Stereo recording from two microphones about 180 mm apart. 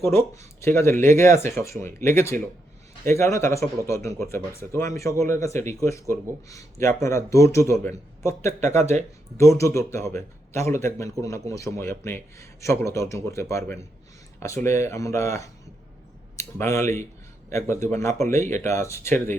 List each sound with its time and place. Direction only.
0.0 s speech: 15° left (ahead or behind)
8.8 s speech: 40° right (ahead or behind)
9.4 s speech: 15° left (ahead or behind)